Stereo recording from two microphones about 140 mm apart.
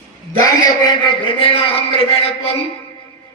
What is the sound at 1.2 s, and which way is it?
A man's voice, 40° left (ahead or behind).